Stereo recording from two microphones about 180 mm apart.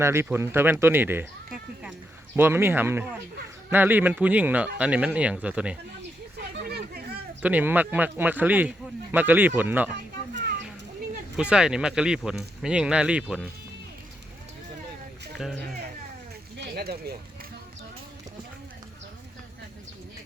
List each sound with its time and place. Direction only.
0.0 s speech: 15° right (ahead or behind)
2.3 s speech: 10° right (ahead or behind)
6.6 s a sound: 60° right (ahead or behind)
7.4 s speech: 10° right (ahead or behind)
11.3 s speech: 5° right (ahead or behind)
15.4 s speech: centre (ahead or behind)
16.6 s a sound: 60° right (ahead or behind)